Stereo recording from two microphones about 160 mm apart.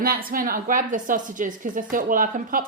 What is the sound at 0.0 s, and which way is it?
A woman's voice, 65° right (ahead or behind).